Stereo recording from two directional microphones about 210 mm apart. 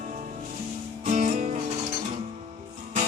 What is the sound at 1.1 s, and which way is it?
Music, 35° right (ahead or behind).